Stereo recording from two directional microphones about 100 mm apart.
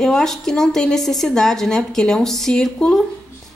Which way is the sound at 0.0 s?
5° left (ahead or behind).